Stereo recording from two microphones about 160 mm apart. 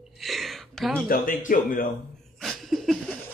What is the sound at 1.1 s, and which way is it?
Speech, 60° left (ahead or behind).